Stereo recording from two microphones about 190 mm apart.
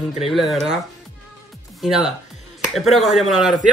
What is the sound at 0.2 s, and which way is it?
Speech, centre (ahead or behind).